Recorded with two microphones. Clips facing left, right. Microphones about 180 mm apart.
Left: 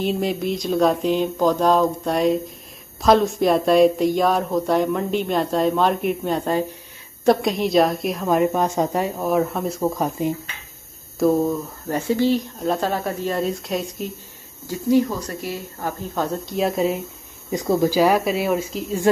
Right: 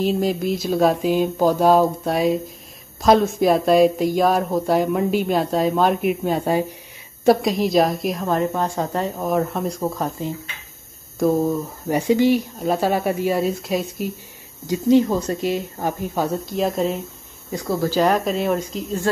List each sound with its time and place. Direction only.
0.0 s a sound: centre (ahead or behind)
8.3 s speech: 15° left (ahead or behind)
9.8 s speech: 15° left (ahead or behind)
11.1 s a sound: centre (ahead or behind)
11.9 s speech: 15° right (ahead or behind)
14.7 s a woman's voice: 20° right (ahead or behind)
16.2 s speech: 10° right (ahead or behind)
16.5 s a sound: 5° left (ahead or behind)
17.5 s speech: 20° left (ahead or behind); by 18.9 s 5° left (ahead or behind)